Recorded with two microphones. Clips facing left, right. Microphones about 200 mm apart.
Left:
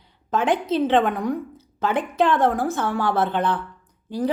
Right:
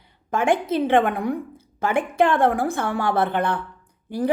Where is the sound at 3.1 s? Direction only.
55° right (ahead or behind).